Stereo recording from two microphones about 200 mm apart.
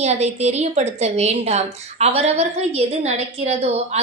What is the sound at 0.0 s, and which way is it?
A woman's voice, 35° right (ahead or behind).